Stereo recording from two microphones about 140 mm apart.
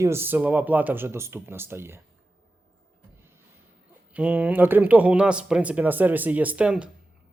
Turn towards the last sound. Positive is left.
turn(degrees=-5)  # may be behind; listen again after turning